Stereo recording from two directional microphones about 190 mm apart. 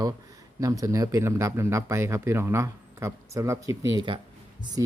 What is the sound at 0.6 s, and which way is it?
Speech, 15° right (ahead or behind).